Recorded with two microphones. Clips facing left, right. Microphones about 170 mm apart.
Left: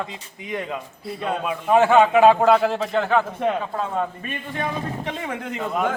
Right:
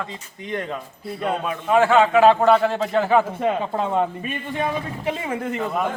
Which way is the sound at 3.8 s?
25° right (ahead or behind).